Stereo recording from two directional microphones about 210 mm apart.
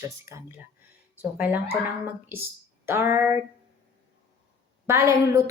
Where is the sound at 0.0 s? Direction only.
15° right (ahead or behind).